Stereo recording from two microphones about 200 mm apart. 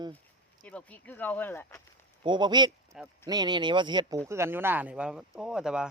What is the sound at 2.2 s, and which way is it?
A man's voice, 20° right (ahead or behind).